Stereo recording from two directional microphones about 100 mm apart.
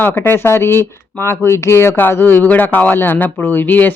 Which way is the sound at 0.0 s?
20° left (ahead or behind).